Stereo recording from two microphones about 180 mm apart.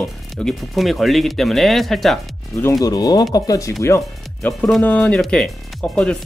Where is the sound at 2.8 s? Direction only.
20° left (ahead or behind).